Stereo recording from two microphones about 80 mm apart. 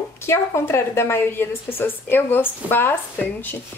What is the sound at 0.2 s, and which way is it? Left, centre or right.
A woman's voice, left.